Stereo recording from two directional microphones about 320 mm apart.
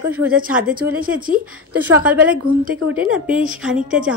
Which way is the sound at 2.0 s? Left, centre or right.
Centre.